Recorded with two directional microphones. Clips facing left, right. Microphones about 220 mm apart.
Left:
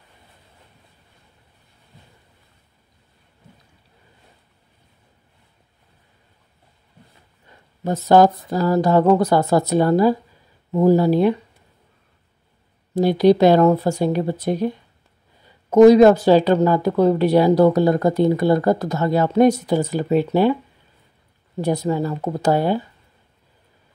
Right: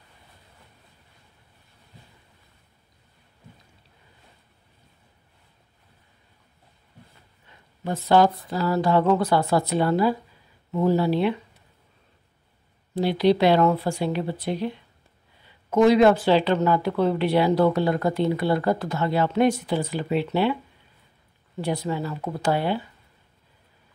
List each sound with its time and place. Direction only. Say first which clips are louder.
7.8 s speech: left 5 dB; 40° left (ahead or behind)
12.9 s speech: left 6 dB; 45° left (ahead or behind)
21.5 s speech: left 6 dB; 40° left (ahead or behind)